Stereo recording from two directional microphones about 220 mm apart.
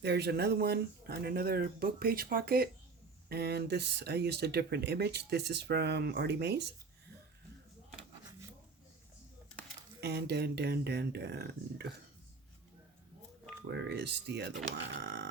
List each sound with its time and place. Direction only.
0.0 s speech: 50° right (ahead or behind)
10.0 s speech: 50° right (ahead or behind)
13.7 s speech: 50° right (ahead or behind)